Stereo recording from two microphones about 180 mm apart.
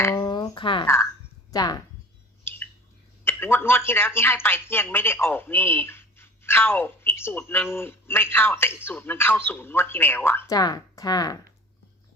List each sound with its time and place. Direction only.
0.0 s a sound: 15° left (ahead or behind)
1.5 s speech: 20° left (ahead or behind)
2.4 s squish: 15° left (ahead or behind)
3.2 s speech: 15° left (ahead or behind)